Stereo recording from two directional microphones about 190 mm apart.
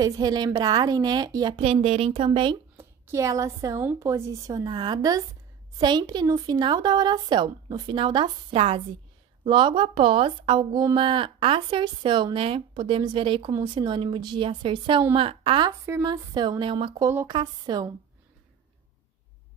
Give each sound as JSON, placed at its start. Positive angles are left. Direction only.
{"t": 0.0, "sound": "speech", "side_deg": -20}
{"t": 2.8, "sound": "a woman's voice", "side_deg": -15}
{"t": 15.8, "sound": "speech", "side_deg": -20}
{"t": 17.0, "sound": "a woman's voice", "side_deg": -10}
{"t": 17.3, "sound": "speech", "side_deg": -25}